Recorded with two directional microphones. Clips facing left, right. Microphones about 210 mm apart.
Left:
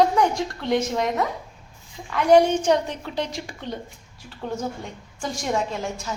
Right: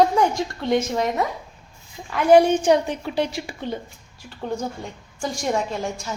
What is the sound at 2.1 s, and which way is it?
A woman's voice, 10° right (ahead or behind).